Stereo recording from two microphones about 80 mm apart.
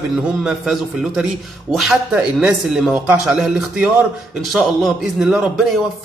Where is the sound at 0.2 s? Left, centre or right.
Centre.